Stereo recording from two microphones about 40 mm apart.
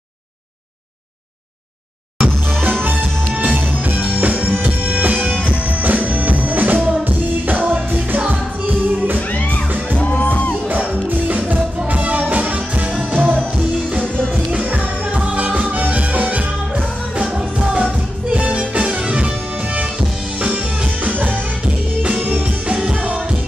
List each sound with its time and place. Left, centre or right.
2.1 s music: right
5.0 s music: right
8.8 s music: right
9.3 s music: left
11.1 s music: right
14.3 s music: right
17.2 s music: right
20.5 s music: right